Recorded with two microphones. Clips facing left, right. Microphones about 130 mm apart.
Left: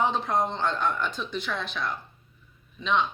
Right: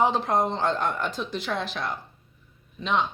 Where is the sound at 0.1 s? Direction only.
30° right (ahead or behind).